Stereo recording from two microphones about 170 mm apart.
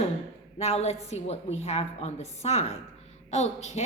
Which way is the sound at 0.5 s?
40° left (ahead or behind).